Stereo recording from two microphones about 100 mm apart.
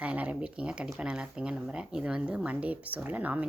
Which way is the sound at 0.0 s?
15° right (ahead or behind).